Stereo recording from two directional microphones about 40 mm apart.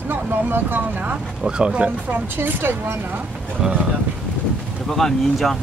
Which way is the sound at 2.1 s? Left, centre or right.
Right.